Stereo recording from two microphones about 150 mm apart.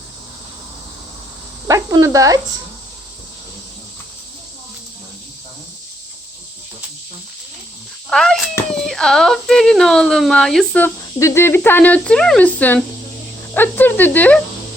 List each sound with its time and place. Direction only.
1.6 s speech: 25° right (ahead or behind)
8.1 s a child's voice: 5° left (ahead or behind)